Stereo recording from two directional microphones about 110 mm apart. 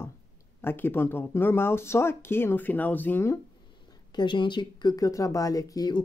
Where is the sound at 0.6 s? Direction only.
20° left (ahead or behind).